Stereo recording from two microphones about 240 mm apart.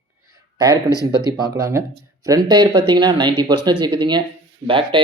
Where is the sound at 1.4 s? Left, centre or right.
Centre.